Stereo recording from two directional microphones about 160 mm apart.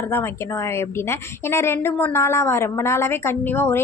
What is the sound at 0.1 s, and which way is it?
A woman's voice, 15° left (ahead or behind).